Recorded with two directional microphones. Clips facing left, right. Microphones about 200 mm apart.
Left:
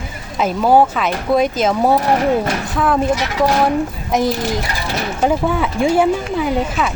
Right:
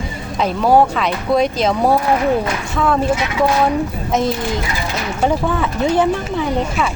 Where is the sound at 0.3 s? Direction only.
Centre (ahead or behind).